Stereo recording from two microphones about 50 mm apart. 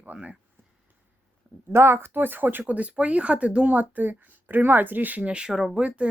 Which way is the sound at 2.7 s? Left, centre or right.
Right.